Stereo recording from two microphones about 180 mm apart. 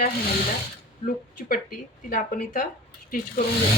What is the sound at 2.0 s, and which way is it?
Speech, 50° left (ahead or behind).